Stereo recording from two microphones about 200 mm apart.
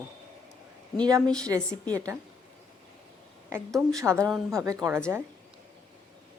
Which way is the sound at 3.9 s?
15° right (ahead or behind).